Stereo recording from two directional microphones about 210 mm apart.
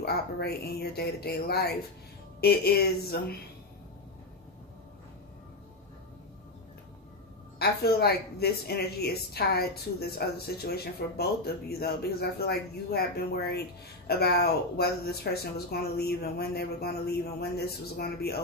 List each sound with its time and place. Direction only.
0.0 s speech: 50° left (ahead or behind)
7.5 s speech: 50° left (ahead or behind)